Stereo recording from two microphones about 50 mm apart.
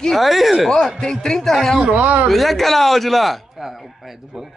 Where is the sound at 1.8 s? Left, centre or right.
Right.